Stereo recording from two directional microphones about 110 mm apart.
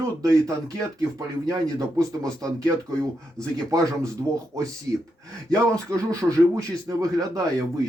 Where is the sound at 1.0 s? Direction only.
30° right (ahead or behind).